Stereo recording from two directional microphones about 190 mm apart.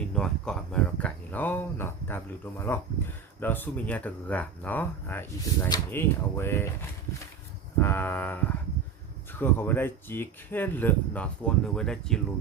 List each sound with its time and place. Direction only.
0.1 s speech: 5° left (ahead or behind)
7.8 s speech: 10° left (ahead or behind)